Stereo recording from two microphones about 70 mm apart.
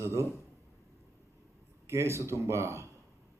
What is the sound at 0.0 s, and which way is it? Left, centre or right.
Speech, right.